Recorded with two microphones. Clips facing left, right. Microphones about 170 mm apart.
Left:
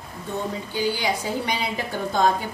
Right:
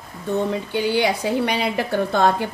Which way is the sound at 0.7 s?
65° right (ahead or behind).